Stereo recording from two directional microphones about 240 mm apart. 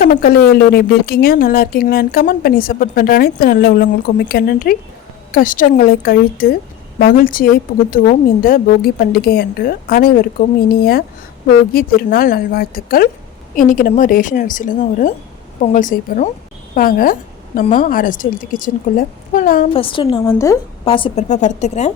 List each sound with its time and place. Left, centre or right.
0.0 s a woman's voice: left
19.7 s a woman's voice: left